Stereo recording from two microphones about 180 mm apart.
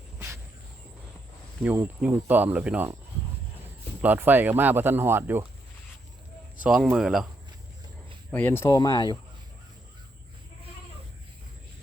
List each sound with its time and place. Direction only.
1.6 s speech: 10° right (ahead or behind)
4.0 s speech: 10° right (ahead or behind)
6.6 s speech: 5° right (ahead or behind)
8.3 s speech: 10° left (ahead or behind)